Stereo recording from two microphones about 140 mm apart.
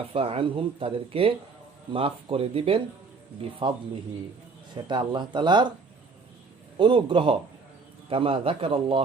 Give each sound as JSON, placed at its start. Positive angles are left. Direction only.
{"t": 0.1, "sound": "speech", "side_deg": -40}
{"t": 4.9, "sound": "speech", "side_deg": -35}
{"t": 6.7, "sound": "speech", "side_deg": -35}